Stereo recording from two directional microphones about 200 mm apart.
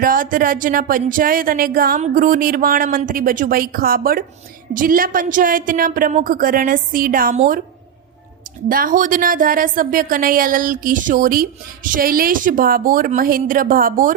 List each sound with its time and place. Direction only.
0.0 s speech: 45° right (ahead or behind)
8.7 s speech: 45° right (ahead or behind)